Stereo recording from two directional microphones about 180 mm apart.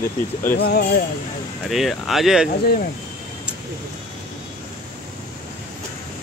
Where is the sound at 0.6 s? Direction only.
60° left (ahead or behind).